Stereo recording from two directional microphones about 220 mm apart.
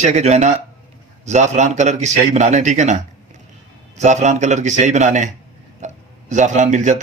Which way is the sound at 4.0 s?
30° right (ahead or behind).